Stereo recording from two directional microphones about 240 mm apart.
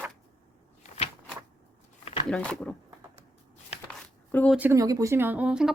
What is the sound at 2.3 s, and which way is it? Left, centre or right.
Speech, centre.